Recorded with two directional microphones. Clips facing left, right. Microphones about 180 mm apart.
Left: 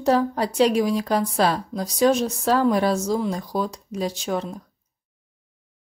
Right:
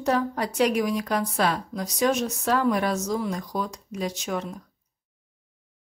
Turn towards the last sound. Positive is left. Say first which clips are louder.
# left 3 dB
turn(degrees=30)  # may be behind; listen again after turning